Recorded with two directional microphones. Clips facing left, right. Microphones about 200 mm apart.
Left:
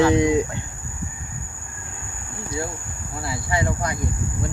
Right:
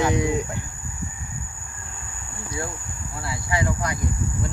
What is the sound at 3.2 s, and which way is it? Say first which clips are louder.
Speech: left 2 dB; 30° left (ahead or behind).